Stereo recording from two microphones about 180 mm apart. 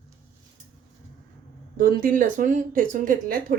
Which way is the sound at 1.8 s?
50° right (ahead or behind).